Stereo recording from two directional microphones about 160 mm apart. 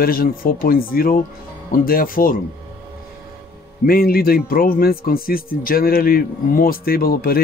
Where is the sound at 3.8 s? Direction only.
70° left (ahead or behind).